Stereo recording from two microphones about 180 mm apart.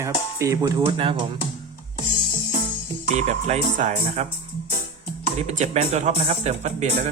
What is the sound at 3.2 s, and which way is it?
Speech, 40° right (ahead or behind).